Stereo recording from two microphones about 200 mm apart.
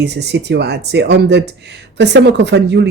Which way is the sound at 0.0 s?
55° right (ahead or behind).